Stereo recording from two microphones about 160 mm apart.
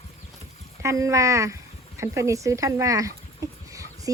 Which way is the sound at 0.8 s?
20° right (ahead or behind).